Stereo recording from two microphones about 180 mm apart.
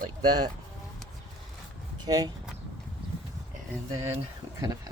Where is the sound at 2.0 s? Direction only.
20° right (ahead or behind).